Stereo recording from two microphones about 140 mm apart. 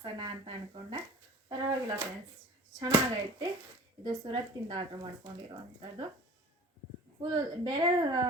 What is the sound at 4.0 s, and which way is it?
Speech, 30° right (ahead or behind).